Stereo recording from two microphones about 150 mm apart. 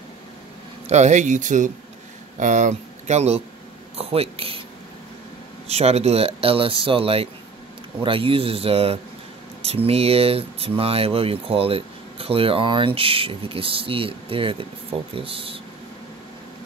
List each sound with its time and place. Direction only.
0.8 s speech: 50° right (ahead or behind)
5.7 s speech: 45° right (ahead or behind)